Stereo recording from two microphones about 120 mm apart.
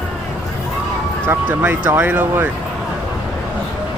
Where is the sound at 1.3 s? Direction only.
15° right (ahead or behind).